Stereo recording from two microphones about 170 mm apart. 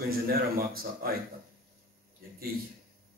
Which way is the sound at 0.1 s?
60° right (ahead or behind).